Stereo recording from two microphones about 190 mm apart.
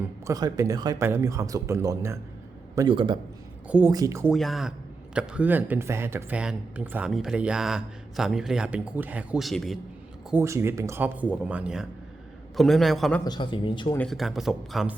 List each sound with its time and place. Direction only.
0.3 s a man's voice: 20° right (ahead or behind)
3.7 s speech: 10° right (ahead or behind)
4.3 s speech: centre (ahead or behind)
10.2 s speech: 10° right (ahead or behind); by 13.2 s 5° left (ahead or behind)
13.2 s speech: 25° left (ahead or behind)
13.9 s speech: 5° left (ahead or behind)